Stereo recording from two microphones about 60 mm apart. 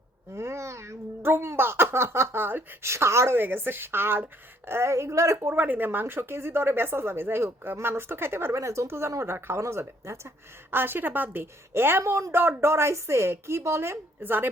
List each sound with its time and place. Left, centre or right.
0.3 s a child's voice: right
2.9 s a woman's voice: right
3.3 s a woman's voice: right
5.5 s a woman's voice: right
10.8 s a woman's voice: right